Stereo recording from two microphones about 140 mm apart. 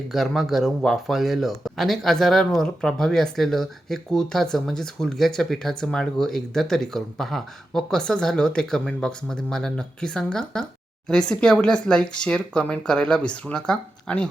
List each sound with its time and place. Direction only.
0.1 s speech: centre (ahead or behind)